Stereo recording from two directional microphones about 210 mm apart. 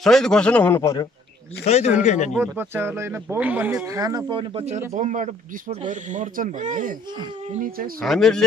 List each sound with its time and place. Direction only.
0.0 s a man's voice: centre (ahead or behind)
1.6 s speech: 30° left (ahead or behind)
2.3 s speech: 10° right (ahead or behind); by 7.0 s 35° right (ahead or behind)
8.0 s a man's voice: centre (ahead or behind)